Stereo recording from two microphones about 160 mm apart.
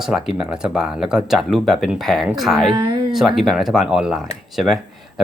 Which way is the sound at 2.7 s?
25° right (ahead or behind).